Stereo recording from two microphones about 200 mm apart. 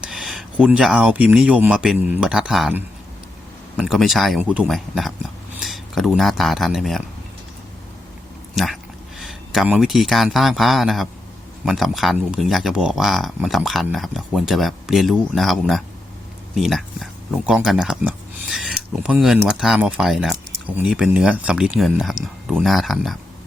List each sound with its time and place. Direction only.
0.0 s speech: centre (ahead or behind)
8.5 s speech: centre (ahead or behind)